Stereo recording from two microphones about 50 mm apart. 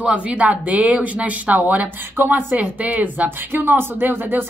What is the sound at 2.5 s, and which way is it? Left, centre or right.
Speech, right.